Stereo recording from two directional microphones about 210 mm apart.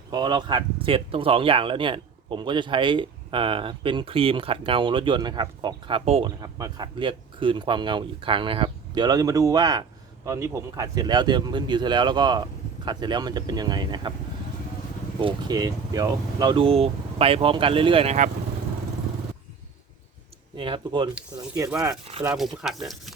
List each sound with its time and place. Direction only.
0.1 s speech: 20° right (ahead or behind)
15.2 s speech: 20° right (ahead or behind)
20.6 s speech: 25° right (ahead or behind)
21.2 s speech: 5° right (ahead or behind)